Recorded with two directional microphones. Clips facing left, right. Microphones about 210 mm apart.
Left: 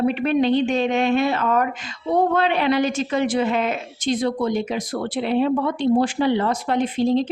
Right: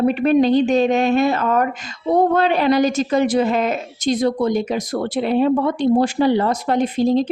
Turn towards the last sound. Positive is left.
turn(degrees=-40)  # may be behind; listen again after turning